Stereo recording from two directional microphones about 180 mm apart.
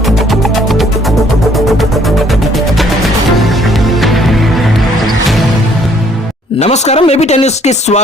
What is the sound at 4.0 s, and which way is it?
Music, centre (ahead or behind).